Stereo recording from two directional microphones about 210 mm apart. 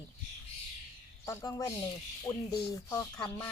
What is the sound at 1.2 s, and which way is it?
Speech, 15° left (ahead or behind).